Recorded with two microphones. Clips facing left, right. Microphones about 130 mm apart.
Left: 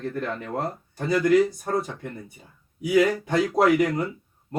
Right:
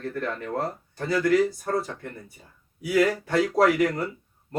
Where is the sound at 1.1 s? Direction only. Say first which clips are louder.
Left 2 dB; 20° left (ahead or behind).